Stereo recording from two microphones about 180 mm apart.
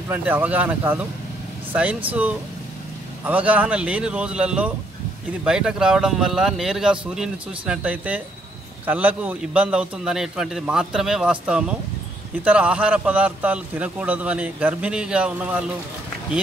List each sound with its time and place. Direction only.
0.1 s a man's voice: 10° right (ahead or behind)